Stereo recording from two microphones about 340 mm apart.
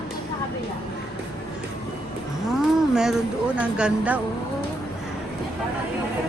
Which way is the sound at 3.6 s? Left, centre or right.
Centre.